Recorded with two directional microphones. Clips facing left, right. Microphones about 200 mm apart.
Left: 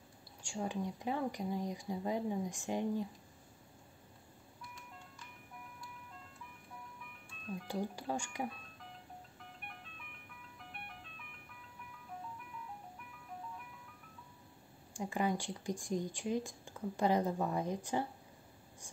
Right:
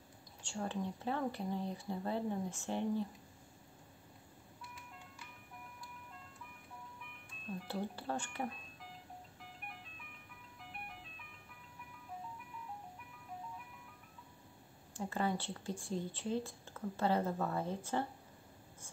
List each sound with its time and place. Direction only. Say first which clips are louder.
0.4 s speech: left 1 dB; 10° left (ahead or behind)
7.5 s speech: left 2 dB; 15° left (ahead or behind)
15.0 s speech: left 2 dB; 15° left (ahead or behind)